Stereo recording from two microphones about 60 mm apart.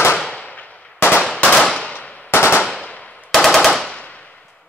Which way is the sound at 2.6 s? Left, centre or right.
Centre.